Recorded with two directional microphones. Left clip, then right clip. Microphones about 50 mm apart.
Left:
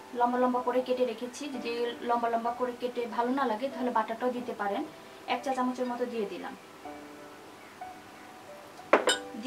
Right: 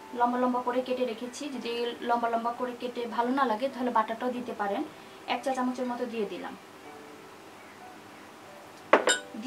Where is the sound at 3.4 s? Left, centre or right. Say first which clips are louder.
Right 3 dB; right.